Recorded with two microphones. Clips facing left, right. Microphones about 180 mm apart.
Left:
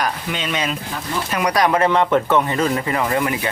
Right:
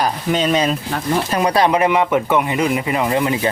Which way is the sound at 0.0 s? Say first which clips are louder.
Right 6 dB; 35° right (ahead or behind).